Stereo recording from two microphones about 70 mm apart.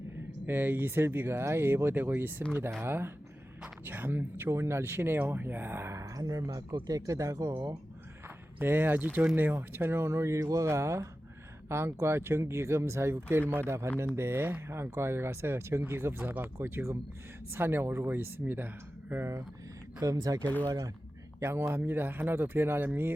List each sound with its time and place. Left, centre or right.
0.4 s speech: right
5.9 s speech: right
8.5 s speech: right
20.1 s speech: right
20.4 s speech: left
20.7 s speech: right
21.7 s speech: right